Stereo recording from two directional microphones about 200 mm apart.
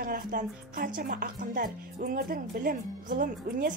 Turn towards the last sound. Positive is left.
turn(degrees=-40)  # may be behind; listen again after turning